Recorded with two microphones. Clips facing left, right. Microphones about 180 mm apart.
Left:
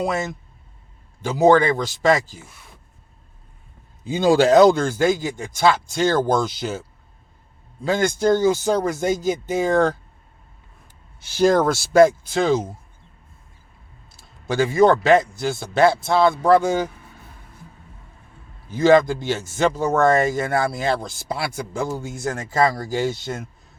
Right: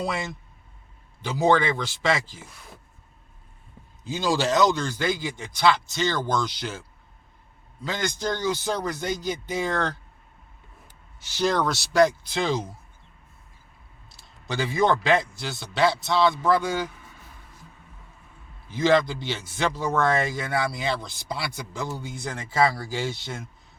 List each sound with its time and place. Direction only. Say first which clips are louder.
0.0 s a man's voice: left 6 dB; 45° left (ahead or behind)
4.0 s a man's voice: left 8 dB; 60° left (ahead or behind)
7.8 s a man's voice: left 9 dB; 50° left (ahead or behind)
11.3 s a man's voice: left 7 dB; 45° left (ahead or behind)
14.2 s a man's voice: left 8 dB; 50° left (ahead or behind)
18.7 s a man's voice: left 6 dB; 45° left (ahead or behind)